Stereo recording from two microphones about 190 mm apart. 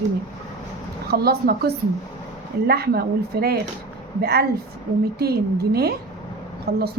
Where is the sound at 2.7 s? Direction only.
55° right (ahead or behind).